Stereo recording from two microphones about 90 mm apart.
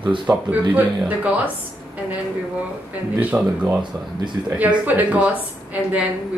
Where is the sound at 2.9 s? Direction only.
15° right (ahead or behind).